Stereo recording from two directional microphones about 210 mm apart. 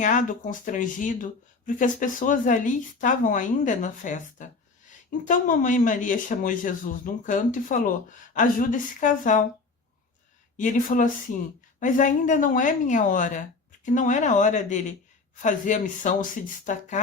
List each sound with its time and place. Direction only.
0.0 s speech: 40° left (ahead or behind)
10.6 s speech: 40° left (ahead or behind)